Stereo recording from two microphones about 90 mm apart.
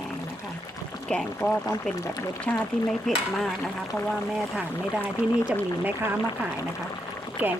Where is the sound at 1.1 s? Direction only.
10° left (ahead or behind).